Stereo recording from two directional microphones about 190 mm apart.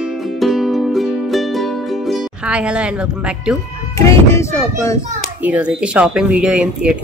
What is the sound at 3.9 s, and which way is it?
Speech, 15° left (ahead or behind).